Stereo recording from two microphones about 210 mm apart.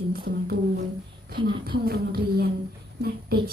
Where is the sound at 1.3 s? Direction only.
45° right (ahead or behind).